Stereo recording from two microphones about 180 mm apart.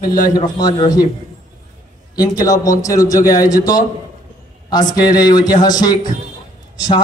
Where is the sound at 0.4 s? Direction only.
20° left (ahead or behind).